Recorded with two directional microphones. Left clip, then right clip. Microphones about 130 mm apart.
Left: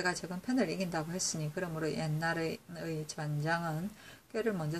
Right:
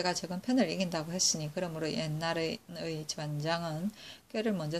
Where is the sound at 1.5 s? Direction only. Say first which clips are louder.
Right 1 dB; 40° right (ahead or behind).